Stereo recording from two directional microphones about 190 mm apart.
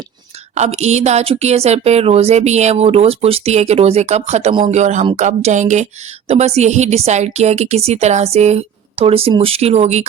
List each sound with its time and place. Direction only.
0.5 s a woman's voice: 35° right (ahead or behind)